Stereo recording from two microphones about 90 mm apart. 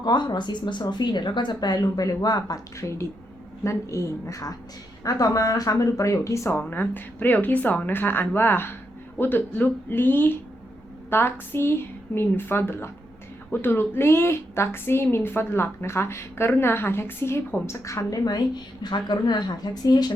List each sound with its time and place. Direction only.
0.0 s speech: 55° left (ahead or behind)
3.6 s speech: 35° left (ahead or behind)
6.6 s a woman's voice: 20° left (ahead or behind); by 20.1 s 50° left (ahead or behind)